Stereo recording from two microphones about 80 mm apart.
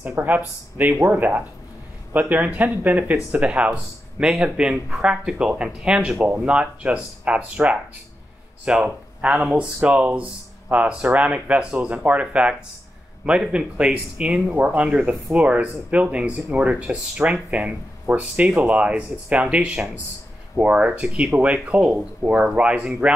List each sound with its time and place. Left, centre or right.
0.2 s speech: right
8.8 s speech: centre